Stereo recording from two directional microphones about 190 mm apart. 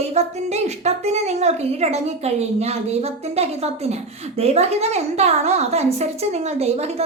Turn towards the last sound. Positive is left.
turn(degrees=-35)  # may be behind; listen again after turning